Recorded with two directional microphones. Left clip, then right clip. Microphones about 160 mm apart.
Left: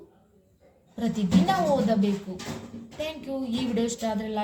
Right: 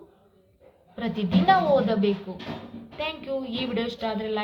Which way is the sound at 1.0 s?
25° left (ahead or behind).